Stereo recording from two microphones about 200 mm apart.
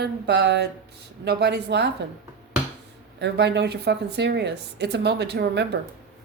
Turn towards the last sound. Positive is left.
turn(degrees=-55)  # may be behind; listen again after turning